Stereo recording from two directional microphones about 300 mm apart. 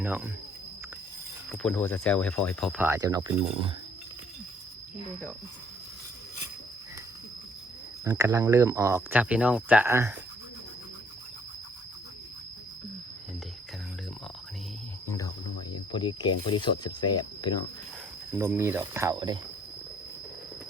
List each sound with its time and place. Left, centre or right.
0.0 s speech: centre
1.5 s speech: centre
8.0 s speech: centre
15.0 s a sound: centre
15.9 s speech: centre
18.3 s speech: centre